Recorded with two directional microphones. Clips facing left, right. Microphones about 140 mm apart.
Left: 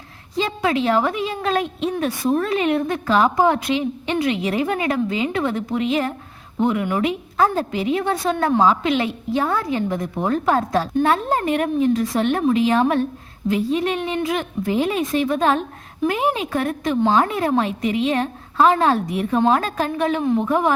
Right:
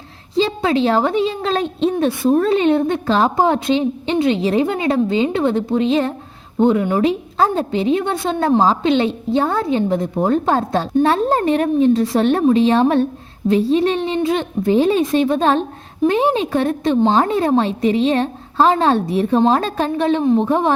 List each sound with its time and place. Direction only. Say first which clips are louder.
0.3 s a woman's voice: right 4 dB; 30° right (ahead or behind)